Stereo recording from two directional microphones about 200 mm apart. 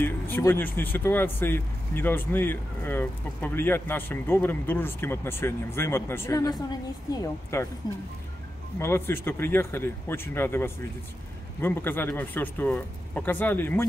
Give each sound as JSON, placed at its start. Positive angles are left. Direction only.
{"t": 0.0, "sound": "speech", "side_deg": 10}
{"t": 8.7, "sound": "speech", "side_deg": 10}